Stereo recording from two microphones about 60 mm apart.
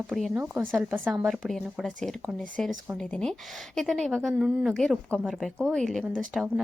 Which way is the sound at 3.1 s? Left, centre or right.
Centre.